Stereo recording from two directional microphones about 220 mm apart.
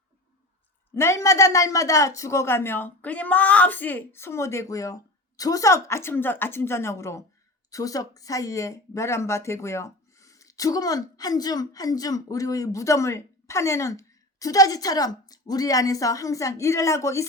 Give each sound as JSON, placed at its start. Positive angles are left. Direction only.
{"t": 0.9, "sound": "speech", "side_deg": 10}